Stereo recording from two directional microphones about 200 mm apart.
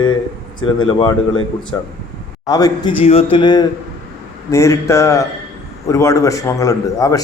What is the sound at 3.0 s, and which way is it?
A man's voice, 30° left (ahead or behind).